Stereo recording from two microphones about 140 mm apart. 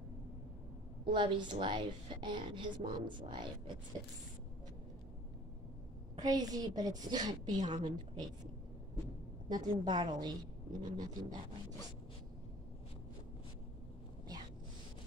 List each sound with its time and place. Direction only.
1.0 s a woman's voice: 35° right (ahead or behind)
6.1 s a woman's voice: 30° right (ahead or behind)
9.5 s a woman's voice: 30° right (ahead or behind)